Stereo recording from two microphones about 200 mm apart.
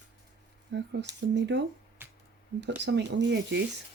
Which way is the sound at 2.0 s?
10° right (ahead or behind).